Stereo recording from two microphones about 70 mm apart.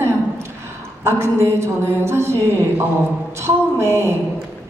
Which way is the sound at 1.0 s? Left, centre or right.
Right.